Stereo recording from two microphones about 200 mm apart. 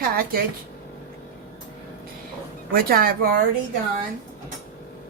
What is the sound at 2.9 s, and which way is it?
Speech, 45° right (ahead or behind).